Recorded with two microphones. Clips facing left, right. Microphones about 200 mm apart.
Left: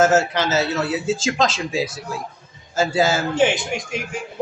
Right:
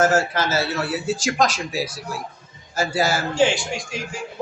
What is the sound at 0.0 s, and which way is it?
Speech, 25° left (ahead or behind).